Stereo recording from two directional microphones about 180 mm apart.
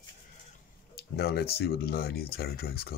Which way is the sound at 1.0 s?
65° left (ahead or behind).